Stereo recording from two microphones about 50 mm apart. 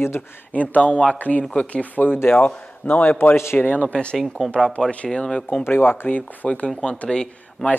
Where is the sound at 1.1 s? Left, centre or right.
Left.